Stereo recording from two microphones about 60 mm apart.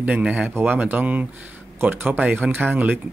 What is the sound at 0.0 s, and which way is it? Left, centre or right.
Speech, right.